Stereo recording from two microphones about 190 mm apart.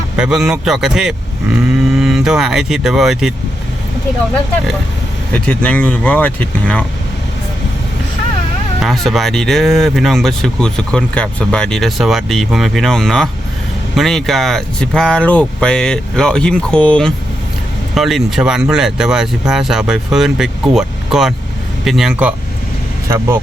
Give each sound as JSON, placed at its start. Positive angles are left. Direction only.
{"t": 0.2, "sound": "speech", "side_deg": -5}
{"t": 5.3, "sound": "speech", "side_deg": 5}
{"t": 8.8, "sound": "speech", "side_deg": 0}
{"t": 23.0, "sound": "speech", "side_deg": -15}